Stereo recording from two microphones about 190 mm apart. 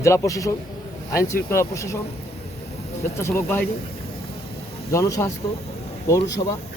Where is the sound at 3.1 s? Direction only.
15° left (ahead or behind).